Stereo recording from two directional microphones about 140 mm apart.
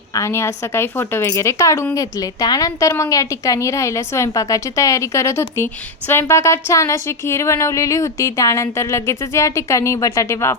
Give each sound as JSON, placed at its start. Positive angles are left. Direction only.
{"t": 0.1, "sound": "speech", "side_deg": 20}